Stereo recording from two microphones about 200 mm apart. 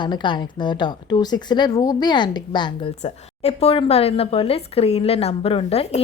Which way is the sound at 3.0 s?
35° left (ahead or behind).